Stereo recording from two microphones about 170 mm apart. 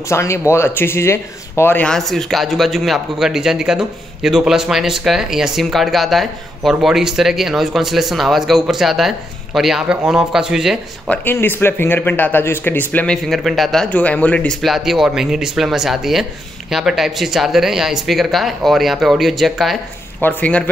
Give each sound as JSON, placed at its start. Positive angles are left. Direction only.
{"t": 0.1, "sound": "speech", "side_deg": 15}
{"t": 11.1, "sound": "speech", "side_deg": 10}
{"t": 20.2, "sound": "speech", "side_deg": 10}